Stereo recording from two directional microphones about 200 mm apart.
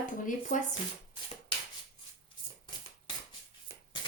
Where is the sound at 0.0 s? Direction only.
40° left (ahead or behind).